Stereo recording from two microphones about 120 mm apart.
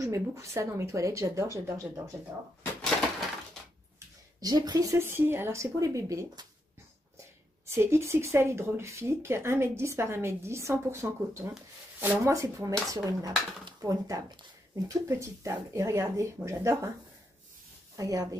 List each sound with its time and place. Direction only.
0.0 s speech: 25° right (ahead or behind)
4.4 s speech: 35° right (ahead or behind)
7.6 s speech: 20° right (ahead or behind)
17.9 s speech: 30° right (ahead or behind)